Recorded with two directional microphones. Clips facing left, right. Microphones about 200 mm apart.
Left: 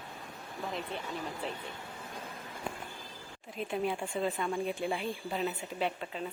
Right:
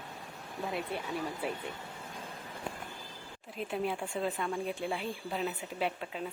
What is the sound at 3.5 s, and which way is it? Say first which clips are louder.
Speech: left 1 dB; centre (ahead or behind).